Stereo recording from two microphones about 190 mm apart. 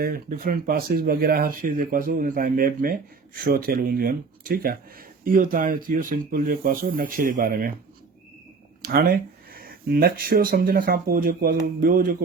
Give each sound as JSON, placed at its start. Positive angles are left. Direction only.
{"t": 0.0, "sound": "speech", "side_deg": -50}
{"t": 8.8, "sound": "speech", "side_deg": -50}